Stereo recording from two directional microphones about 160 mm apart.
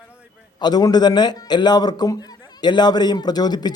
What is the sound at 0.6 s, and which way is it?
A man's voice, 25° left (ahead or behind).